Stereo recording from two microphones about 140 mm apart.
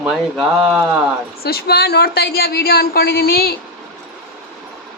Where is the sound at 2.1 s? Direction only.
90° left.